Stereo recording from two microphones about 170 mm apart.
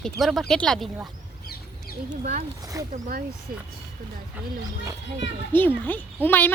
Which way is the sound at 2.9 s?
55° right (ahead or behind).